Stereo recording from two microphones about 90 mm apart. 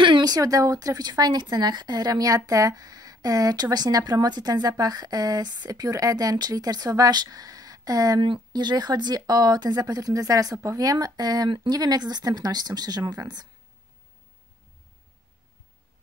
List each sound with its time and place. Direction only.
0.0 s speech: 55° right (ahead or behind)
8.2 s speech: 60° right (ahead or behind)